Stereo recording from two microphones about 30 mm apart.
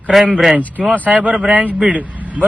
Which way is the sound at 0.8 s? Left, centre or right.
Right.